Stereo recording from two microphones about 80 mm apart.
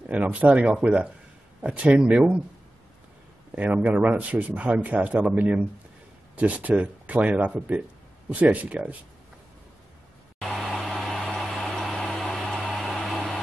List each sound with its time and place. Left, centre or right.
0.0 s speech: centre
3.5 s speech: centre
10.4 s vehicle: centre